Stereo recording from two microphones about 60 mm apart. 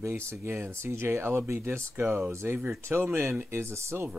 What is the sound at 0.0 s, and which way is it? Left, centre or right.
Speech, right.